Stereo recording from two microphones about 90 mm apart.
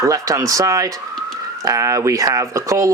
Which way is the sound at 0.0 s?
40° right (ahead or behind).